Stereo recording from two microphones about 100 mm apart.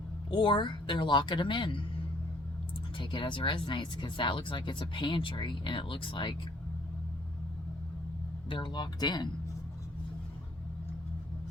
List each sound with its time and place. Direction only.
0.3 s speech: 50° left (ahead or behind)
3.0 s speech: 55° left (ahead or behind)
8.4 s speech: 55° left (ahead or behind)